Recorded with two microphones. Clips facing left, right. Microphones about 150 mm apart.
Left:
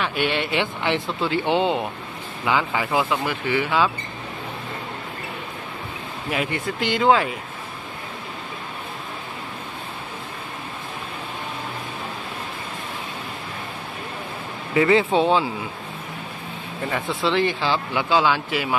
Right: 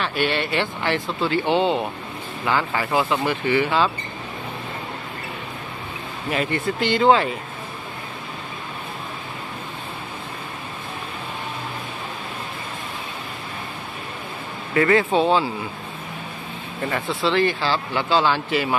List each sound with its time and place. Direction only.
0.0 s speech: 15° left (ahead or behind)
6.3 s speech: 10° left (ahead or behind)
14.7 s speech: 15° left (ahead or behind)
17.3 s speech: 20° left (ahead or behind)